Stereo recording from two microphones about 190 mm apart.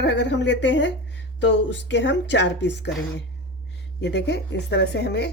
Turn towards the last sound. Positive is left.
turn(degrees=60)  # may be behind; listen again after turning